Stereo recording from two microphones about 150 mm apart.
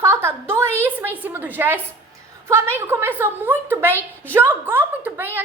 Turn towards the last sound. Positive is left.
turn(degrees=-15)  # may be behind; listen again after turning